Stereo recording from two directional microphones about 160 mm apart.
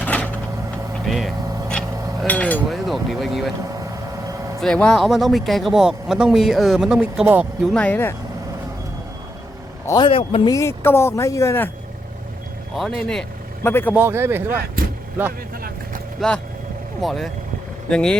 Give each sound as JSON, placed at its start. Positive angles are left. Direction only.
{"t": 0.0, "sound": "a sound", "side_deg": 10}
{"t": 1.0, "sound": "vehicle", "side_deg": 0}
{"t": 2.2, "sound": "chink", "side_deg": 10}
{"t": 2.6, "sound": "a sound", "side_deg": 0}
{"t": 3.8, "sound": "vehicle", "side_deg": -20}
{"t": 4.6, "sound": "speech", "side_deg": 5}
{"t": 7.7, "sound": "speech", "side_deg": 10}
{"t": 10.0, "sound": "a man's voice", "side_deg": 35}
{"t": 10.5, "sound": "speech", "side_deg": 15}
{"t": 12.7, "sound": "speech", "side_deg": 0}
{"t": 13.7, "sound": "speech", "side_deg": 15}
{"t": 13.9, "sound": "speech", "side_deg": -15}
{"t": 16.2, "sound": "speech", "side_deg": 0}